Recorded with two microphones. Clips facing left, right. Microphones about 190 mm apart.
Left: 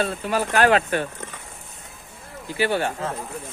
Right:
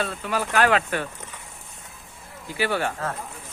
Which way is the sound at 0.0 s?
30° left (ahead or behind).